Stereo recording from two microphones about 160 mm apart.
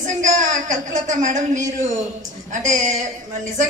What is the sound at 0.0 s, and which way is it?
Speech, 50° right (ahead or behind).